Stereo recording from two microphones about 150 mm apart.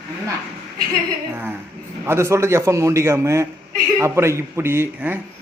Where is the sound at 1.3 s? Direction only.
15° right (ahead or behind).